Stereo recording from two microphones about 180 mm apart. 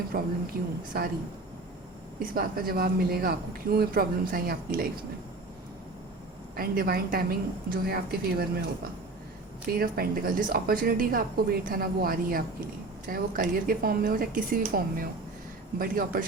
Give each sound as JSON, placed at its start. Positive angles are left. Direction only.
{"t": 0.1, "sound": "a man's voice", "side_deg": -55}
{"t": 2.1, "sound": "a man's voice", "side_deg": -55}
{"t": 6.6, "sound": "a man's voice", "side_deg": -55}
{"t": 9.7, "sound": "a woman's voice", "side_deg": -55}